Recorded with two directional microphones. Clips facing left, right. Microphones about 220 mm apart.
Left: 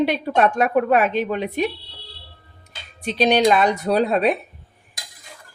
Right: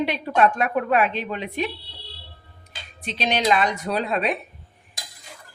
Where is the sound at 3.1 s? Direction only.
40° left (ahead or behind).